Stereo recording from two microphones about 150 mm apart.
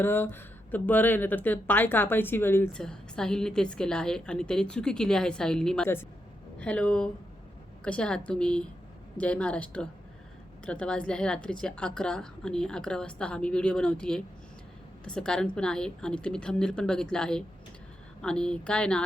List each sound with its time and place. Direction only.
0.0 s speech: 15° left (ahead or behind)
2.8 s a woman's voice: 5° left (ahead or behind)